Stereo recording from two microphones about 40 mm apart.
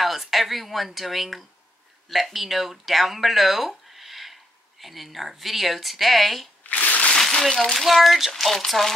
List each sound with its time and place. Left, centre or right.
0.0 s speech: centre
6.6 s shuffling cards: left
7.2 s speech: centre
7.8 s speech: centre